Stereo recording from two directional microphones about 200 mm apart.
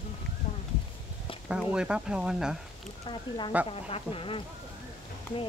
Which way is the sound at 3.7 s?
30° left (ahead or behind).